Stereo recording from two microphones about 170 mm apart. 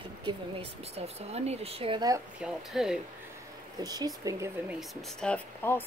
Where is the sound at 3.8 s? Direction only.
20° right (ahead or behind).